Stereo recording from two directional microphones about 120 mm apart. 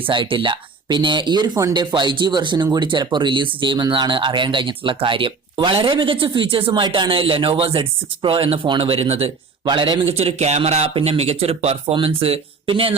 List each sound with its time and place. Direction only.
0.0 s speech: 45° right (ahead or behind)
9.6 s speech: 40° right (ahead or behind)